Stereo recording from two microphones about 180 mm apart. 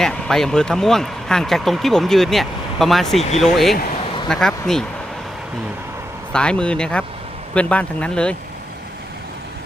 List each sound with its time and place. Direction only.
0.0 s speech: 5° left (ahead or behind)
3.2 s speech: 35° left (ahead or behind)
3.4 s speech: centre (ahead or behind)
6.3 s speech: 5° left (ahead or behind)